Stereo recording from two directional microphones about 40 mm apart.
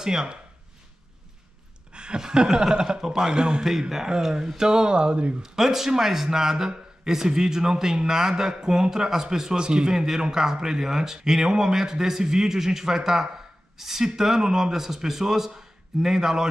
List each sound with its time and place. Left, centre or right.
0.0 s a man's voice: centre
1.9 s a sound: right
2.7 s a man's voice: centre
5.4 s a man's voice: centre